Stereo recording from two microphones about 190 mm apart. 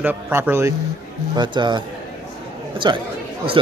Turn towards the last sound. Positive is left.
turn(degrees=-25)  # may be behind; listen again after turning